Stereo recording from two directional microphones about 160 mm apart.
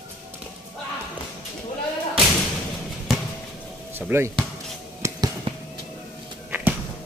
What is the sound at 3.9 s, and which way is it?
Speech, 15° right (ahead or behind).